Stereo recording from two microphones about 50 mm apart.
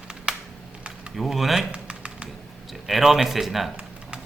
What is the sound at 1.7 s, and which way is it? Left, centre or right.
Typing, right.